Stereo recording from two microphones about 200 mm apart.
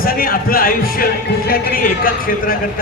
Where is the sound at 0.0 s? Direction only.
45° left (ahead or behind).